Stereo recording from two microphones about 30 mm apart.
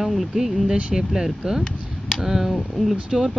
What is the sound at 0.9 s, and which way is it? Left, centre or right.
Speech, right.